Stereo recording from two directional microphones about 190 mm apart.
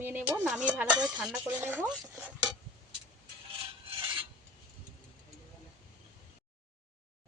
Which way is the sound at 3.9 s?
25° right (ahead or behind).